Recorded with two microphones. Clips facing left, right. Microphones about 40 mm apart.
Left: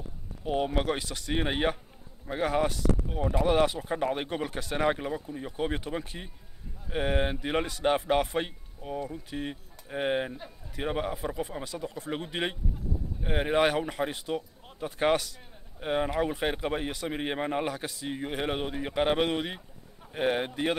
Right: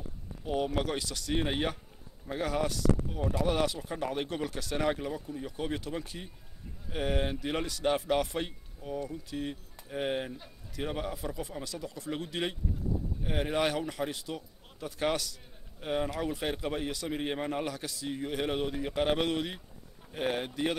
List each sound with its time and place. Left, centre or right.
0.5 s speech: left